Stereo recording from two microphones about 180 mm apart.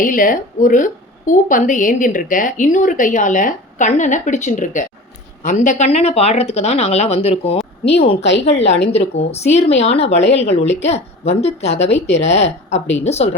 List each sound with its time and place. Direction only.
0.0 s a woman's voice: 50° left (ahead or behind)